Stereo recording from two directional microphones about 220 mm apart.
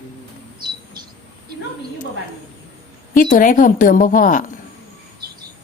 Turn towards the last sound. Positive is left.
turn(degrees=35)  # may be behind; listen again after turning